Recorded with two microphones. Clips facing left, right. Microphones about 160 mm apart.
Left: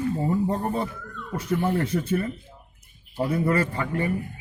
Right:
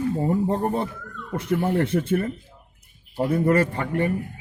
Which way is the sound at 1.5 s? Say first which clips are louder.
Right 2 dB; 50° right (ahead or behind).